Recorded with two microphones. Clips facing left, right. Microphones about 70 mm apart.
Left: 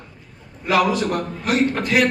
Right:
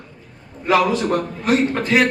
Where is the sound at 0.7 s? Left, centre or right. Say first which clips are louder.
Right 2 dB; right.